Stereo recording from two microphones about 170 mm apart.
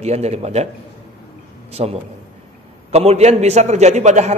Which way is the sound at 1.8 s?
40° right (ahead or behind).